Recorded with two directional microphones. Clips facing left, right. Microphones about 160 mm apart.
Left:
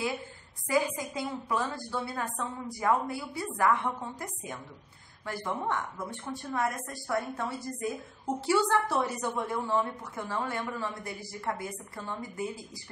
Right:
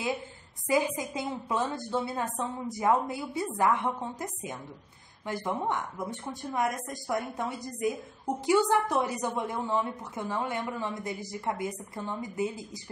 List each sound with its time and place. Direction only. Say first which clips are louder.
0.7 s a woman's voice: right 1 dB; 20° right (ahead or behind)